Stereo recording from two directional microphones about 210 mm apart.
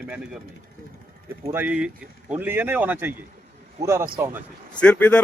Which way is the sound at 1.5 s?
5° right (ahead or behind).